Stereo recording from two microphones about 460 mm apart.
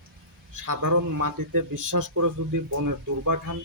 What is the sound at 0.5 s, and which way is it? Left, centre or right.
Speech, right.